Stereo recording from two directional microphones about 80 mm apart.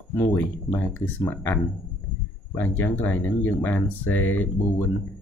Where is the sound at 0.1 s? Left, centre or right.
Left.